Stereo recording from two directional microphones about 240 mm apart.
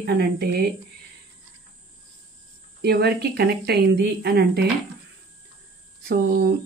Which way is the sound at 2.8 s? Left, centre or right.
Right.